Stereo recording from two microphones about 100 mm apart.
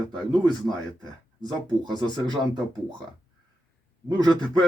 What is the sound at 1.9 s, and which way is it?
Speech, 50° right (ahead or behind).